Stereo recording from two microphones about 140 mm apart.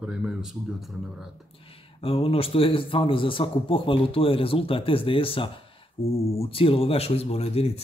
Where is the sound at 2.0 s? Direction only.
40° left (ahead or behind).